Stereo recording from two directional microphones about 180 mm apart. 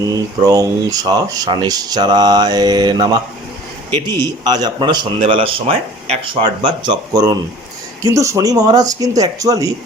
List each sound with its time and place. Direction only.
0.4 s speech: 20° right (ahead or behind)